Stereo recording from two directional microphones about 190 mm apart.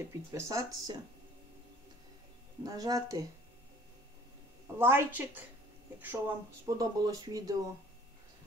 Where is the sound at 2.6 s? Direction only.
20° right (ahead or behind).